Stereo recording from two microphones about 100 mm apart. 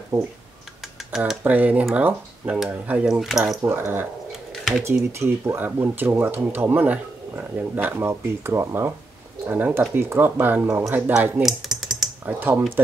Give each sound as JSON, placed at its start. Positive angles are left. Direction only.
{"t": 0.1, "sound": "speech", "side_deg": -25}
{"t": 1.1, "sound": "speech", "side_deg": -5}
{"t": 1.4, "sound": "speech", "side_deg": -15}
{"t": 3.6, "sound": "speech", "side_deg": -25}
{"t": 11.4, "sound": "typing", "side_deg": 0}
{"t": 12.3, "sound": "speech", "side_deg": -20}